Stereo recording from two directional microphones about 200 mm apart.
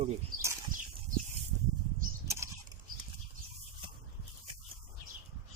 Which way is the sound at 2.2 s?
15° right (ahead or behind).